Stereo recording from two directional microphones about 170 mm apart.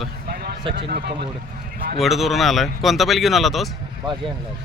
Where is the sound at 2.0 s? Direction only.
Centre (ahead or behind).